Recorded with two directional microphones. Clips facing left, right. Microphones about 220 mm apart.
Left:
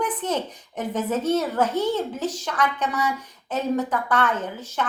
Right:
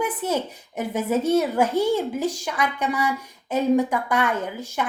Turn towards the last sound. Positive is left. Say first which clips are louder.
# right 1 dB
turn(degrees=-10)  # may be behind; listen again after turning